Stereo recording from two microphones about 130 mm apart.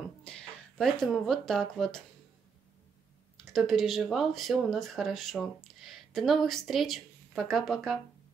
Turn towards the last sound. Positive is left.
turn(degrees=0)  # may be behind; listen again after turning